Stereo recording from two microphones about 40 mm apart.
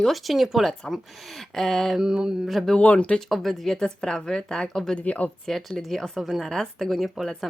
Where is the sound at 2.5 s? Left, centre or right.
Centre.